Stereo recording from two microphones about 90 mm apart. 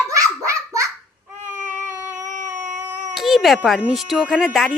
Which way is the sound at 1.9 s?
35° right (ahead or behind).